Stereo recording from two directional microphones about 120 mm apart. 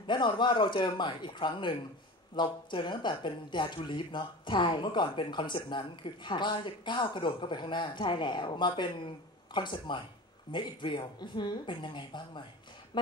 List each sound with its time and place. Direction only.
0.0 s speech: 40° left (ahead or behind)